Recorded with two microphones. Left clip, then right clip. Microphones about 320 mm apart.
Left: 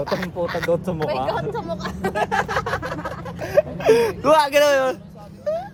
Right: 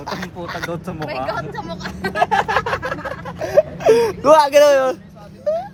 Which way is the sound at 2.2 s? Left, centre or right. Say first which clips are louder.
Right 7 dB; centre.